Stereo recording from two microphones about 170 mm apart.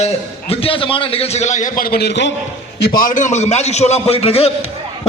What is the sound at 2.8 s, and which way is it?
A man's voice, 60° left (ahead or behind).